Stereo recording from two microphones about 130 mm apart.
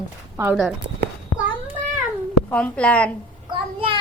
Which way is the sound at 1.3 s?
10° right (ahead or behind).